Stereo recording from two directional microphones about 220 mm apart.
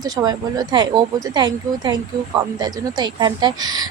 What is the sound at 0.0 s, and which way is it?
A woman's voice, 15° right (ahead or behind).